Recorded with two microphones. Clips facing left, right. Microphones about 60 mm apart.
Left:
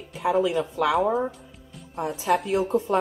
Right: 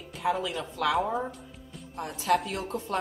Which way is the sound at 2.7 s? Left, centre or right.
Centre.